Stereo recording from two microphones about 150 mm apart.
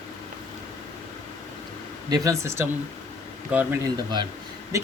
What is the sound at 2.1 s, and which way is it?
Speech, 20° right (ahead or behind).